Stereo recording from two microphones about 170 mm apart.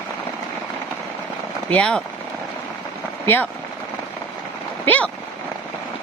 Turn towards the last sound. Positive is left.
turn(degrees=10)  # may be behind; listen again after turning